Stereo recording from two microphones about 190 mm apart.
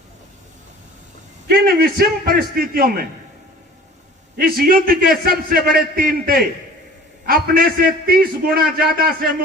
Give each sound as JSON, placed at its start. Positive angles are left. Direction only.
{"t": 1.5, "sound": "a man's voice", "side_deg": -55}
{"t": 4.4, "sound": "a man's voice", "side_deg": -50}